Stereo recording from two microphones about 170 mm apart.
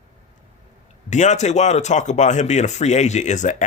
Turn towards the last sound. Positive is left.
turn(degrees=45)  # may be behind; listen again after turning